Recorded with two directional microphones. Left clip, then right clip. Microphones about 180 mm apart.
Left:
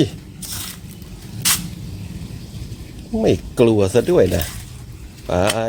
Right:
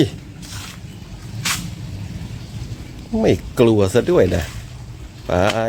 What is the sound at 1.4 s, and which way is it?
Vehicle, 65° left (ahead or behind).